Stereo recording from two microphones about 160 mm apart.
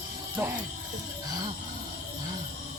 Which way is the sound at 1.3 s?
25° right (ahead or behind).